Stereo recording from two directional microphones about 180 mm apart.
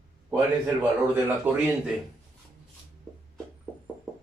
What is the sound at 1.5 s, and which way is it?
Speech, 10° right (ahead or behind).